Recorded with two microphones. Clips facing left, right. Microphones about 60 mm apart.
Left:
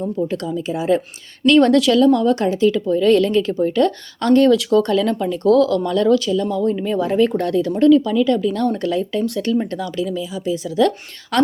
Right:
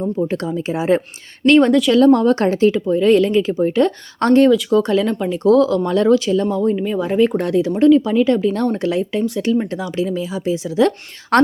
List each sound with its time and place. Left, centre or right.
0.2 s speech: right
2.0 s a woman's voice: right
2.7 s speech: right
4.2 s a woman's voice: right
4.7 s speech: centre
6.6 s speech: centre
10.0 s speech: right
11.3 s a woman's voice: right